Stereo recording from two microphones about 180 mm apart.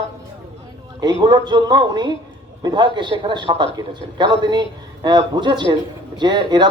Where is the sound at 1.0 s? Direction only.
25° right (ahead or behind).